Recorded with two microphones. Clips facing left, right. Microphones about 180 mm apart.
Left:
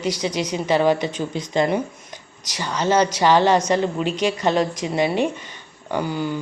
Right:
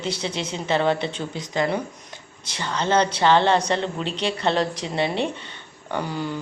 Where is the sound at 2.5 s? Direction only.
10° left (ahead or behind).